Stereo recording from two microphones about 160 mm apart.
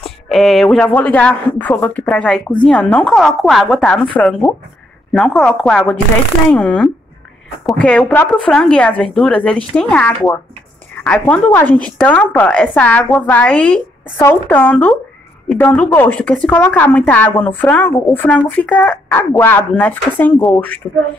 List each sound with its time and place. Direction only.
0.0 s a woman's voice: centre (ahead or behind)